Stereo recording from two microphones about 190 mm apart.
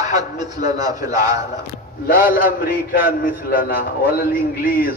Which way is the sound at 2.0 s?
45° left (ahead or behind).